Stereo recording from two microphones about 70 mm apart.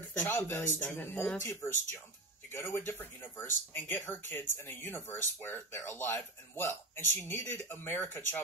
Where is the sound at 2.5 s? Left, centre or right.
Left.